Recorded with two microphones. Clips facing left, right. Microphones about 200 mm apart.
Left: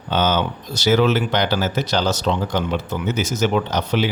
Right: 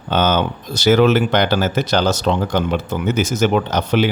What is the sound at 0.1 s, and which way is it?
Speech, 55° right (ahead or behind).